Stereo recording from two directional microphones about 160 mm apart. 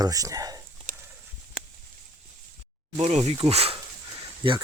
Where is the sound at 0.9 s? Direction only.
50° right (ahead or behind).